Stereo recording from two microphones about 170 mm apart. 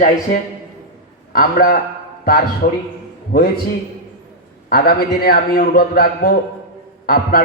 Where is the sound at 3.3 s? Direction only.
55° left (ahead or behind).